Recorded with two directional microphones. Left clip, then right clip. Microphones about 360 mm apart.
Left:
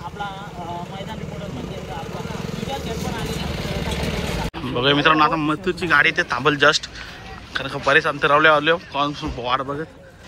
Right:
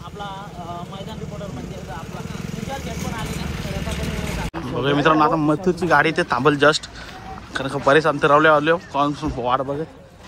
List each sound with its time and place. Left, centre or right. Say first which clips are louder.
3.6 s vehicle: left 3 dB; centre
4.7 s a man's voice: left 1 dB; centre